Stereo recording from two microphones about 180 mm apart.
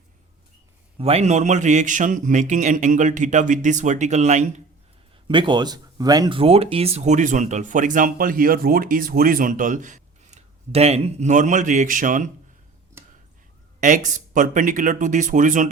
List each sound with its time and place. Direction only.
0.9 s speech: 35° right (ahead or behind)
5.3 s speech: 25° right (ahead or behind); by 12.3 s 45° right (ahead or behind)
13.8 s speech: 45° right (ahead or behind)